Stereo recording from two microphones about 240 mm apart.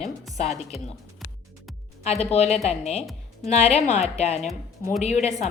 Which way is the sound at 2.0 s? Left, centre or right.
Left.